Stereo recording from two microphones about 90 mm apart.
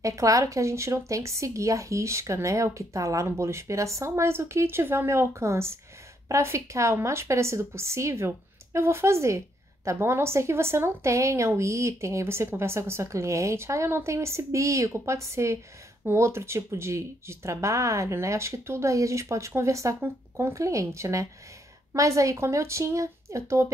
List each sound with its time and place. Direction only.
0.0 s a woman's voice: 35° right (ahead or behind)